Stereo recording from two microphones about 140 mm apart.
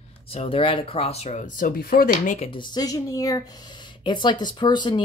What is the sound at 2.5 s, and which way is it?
Speech, 30° left (ahead or behind).